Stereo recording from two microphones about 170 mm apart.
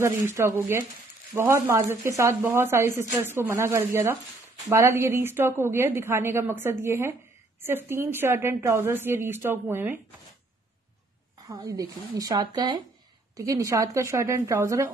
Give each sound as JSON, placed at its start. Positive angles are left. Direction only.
{"t": 0.0, "sound": "a woman's voice", "side_deg": -15}
{"t": 11.4, "sound": "a woman's voice", "side_deg": -20}